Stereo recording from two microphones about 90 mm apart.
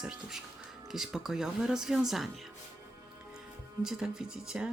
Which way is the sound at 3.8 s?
5° right (ahead or behind).